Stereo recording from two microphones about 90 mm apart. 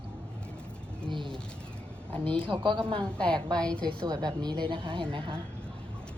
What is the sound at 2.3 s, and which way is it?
Speech, 70° right (ahead or behind).